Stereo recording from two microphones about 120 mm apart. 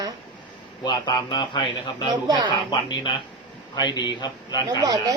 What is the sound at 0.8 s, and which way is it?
Speech, 35° left (ahead or behind).